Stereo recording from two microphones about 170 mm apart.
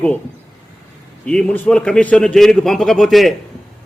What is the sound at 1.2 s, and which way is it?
A man's voice, 5° left (ahead or behind).